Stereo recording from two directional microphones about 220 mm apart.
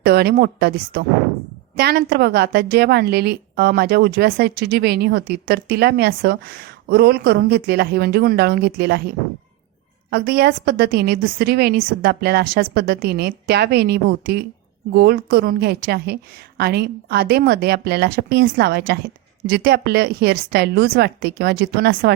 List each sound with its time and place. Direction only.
0.0 s a woman's voice: 45° right (ahead or behind)